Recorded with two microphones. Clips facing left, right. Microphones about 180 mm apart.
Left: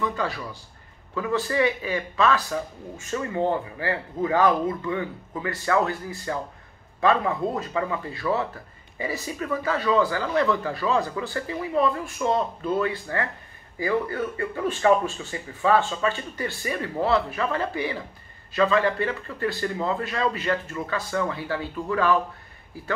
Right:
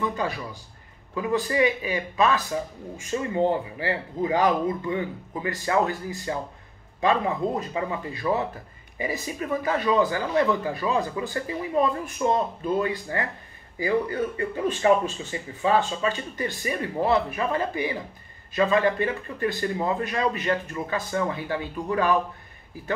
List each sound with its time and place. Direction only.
0.0 s a man's voice: 15° right (ahead or behind)